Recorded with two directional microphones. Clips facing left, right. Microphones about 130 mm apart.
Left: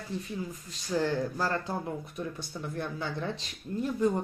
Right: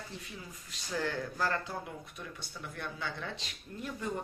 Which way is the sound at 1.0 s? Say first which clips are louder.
Left 2 dB; 35° left (ahead or behind).